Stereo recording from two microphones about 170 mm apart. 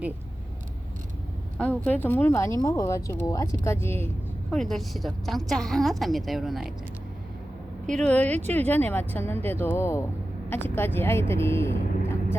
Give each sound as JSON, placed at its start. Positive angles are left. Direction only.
{"t": 1.5, "sound": "speech", "side_deg": 5}
{"t": 4.5, "sound": "a woman's voice", "side_deg": 0}
{"t": 7.9, "sound": "speech", "side_deg": 5}